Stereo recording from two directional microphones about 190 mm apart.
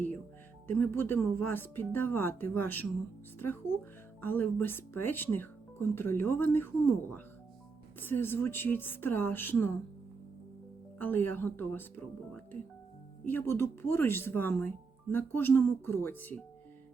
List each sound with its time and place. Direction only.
0.7 s speech: 10° left (ahead or behind)
10.9 s speech: 10° left (ahead or behind)
13.2 s speech: 10° left (ahead or behind)